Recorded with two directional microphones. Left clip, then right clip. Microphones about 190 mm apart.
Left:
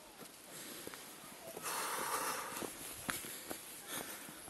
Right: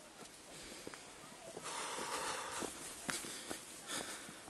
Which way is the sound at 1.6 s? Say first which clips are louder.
Left 3 dB; 30° left (ahead or behind).